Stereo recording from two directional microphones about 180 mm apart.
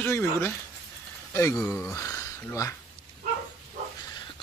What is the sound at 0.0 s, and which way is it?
Speech, 10° left (ahead or behind).